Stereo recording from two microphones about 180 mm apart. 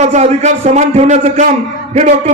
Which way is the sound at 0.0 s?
40° right (ahead or behind).